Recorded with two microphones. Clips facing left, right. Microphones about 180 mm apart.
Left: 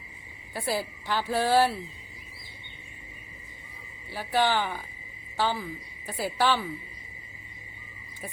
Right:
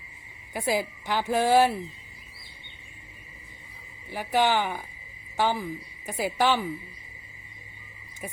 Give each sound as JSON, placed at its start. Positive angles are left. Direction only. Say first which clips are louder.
{"t": 0.5, "sound": "speech", "louder": "right 3 dB", "side_deg": -15}
{"t": 4.1, "sound": "speech", "louder": "right 2 dB", "side_deg": -15}